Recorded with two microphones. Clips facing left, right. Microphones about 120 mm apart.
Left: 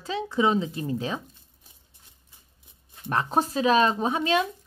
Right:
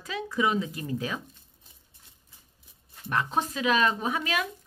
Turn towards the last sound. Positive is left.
turn(degrees=25)  # may be behind; listen again after turning